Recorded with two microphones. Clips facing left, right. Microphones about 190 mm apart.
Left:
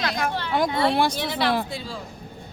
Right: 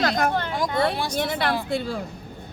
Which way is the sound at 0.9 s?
60° left (ahead or behind).